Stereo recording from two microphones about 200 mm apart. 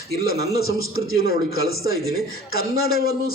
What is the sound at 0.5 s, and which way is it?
Speech, 90° left.